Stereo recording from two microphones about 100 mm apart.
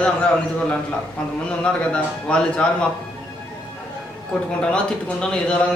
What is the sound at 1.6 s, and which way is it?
A man's voice, 10° left (ahead or behind).